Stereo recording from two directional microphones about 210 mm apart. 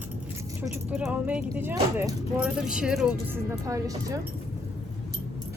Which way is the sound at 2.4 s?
5° right (ahead or behind).